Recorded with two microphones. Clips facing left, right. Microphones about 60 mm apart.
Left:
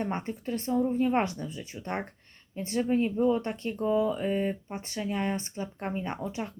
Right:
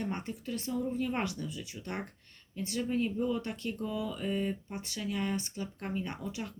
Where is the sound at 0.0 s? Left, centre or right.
Left.